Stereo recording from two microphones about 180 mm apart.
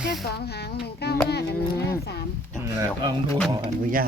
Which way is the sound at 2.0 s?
65° left (ahead or behind).